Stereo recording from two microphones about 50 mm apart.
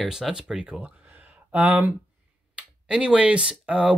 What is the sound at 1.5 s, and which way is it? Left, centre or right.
Speech, right.